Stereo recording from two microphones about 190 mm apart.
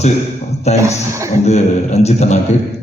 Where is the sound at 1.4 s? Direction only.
35° left (ahead or behind).